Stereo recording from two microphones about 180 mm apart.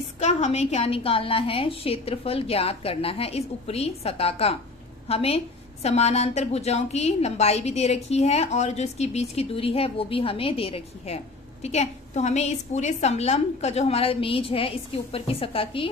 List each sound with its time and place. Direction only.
0.2 s a woman's voice: 40° left (ahead or behind)